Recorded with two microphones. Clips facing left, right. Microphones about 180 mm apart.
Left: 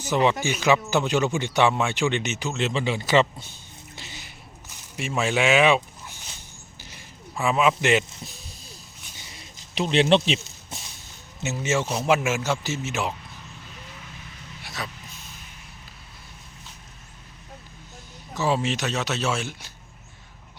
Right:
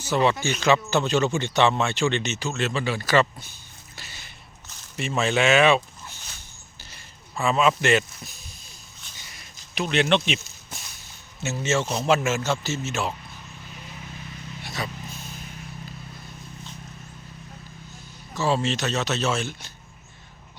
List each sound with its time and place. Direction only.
0.0 s speech: 15° left (ahead or behind)
6.9 s a sound: 15° left (ahead or behind)
8.2 s speech: 30° left (ahead or behind)
9.3 s a sound: 30° left (ahead or behind)
11.3 s speech: 15° left (ahead or behind)
14.6 s dog: centre (ahead or behind)
18.3 s speech: 15° left (ahead or behind)